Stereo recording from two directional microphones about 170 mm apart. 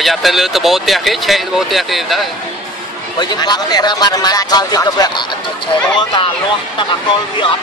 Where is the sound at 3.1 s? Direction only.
25° left (ahead or behind).